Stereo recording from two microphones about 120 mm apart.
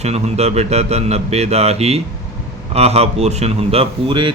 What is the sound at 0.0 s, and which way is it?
Speech, 65° right (ahead or behind).